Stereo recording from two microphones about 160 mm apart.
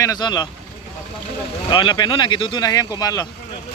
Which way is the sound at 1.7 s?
30° left (ahead or behind).